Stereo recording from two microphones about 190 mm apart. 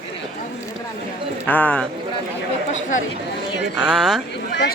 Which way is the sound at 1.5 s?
5° left (ahead or behind).